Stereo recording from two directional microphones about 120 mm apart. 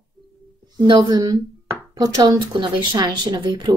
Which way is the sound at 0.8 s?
40° right (ahead or behind).